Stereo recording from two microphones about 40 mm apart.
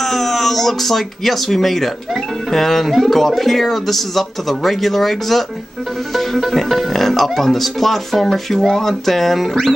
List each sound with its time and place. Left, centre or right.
0.0 s speech: centre